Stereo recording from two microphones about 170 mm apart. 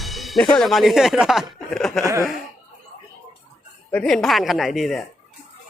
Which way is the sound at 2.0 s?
15° right (ahead or behind).